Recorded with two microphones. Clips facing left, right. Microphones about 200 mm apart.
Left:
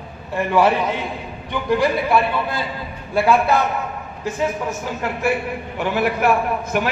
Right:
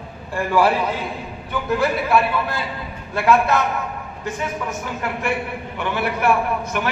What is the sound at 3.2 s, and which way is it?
Speech, 30° left (ahead or behind).